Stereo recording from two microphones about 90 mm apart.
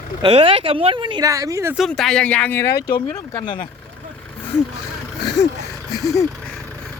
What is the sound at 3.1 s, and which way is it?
Speech, 40° left (ahead or behind).